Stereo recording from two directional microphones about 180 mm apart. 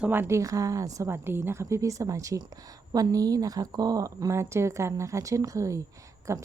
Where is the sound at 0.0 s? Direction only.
10° right (ahead or behind).